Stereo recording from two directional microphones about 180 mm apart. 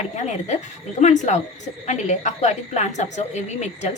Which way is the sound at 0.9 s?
40° left (ahead or behind).